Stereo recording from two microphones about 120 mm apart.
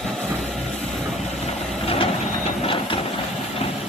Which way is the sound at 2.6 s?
45° left (ahead or behind).